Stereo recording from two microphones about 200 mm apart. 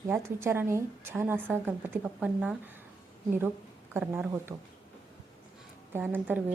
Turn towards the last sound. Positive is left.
turn(degrees=-10)  # may be behind; listen again after turning